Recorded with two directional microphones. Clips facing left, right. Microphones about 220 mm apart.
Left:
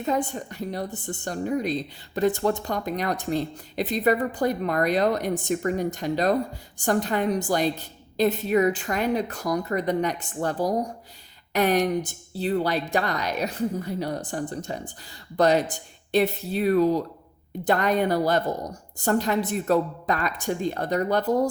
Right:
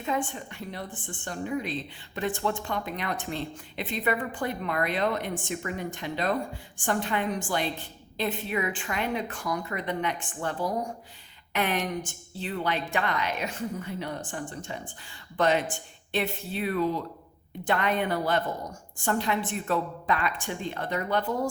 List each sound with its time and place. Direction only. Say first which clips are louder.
0.0 s a woman's voice: left 5 dB; 40° left (ahead or behind)